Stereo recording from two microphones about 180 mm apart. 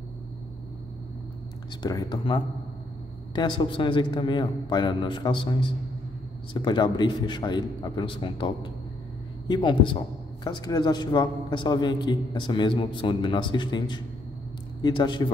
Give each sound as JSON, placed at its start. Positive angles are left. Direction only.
{"t": 1.8, "sound": "a man's voice", "side_deg": 20}